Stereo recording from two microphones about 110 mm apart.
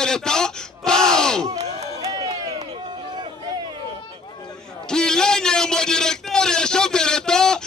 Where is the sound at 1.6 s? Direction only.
80° right.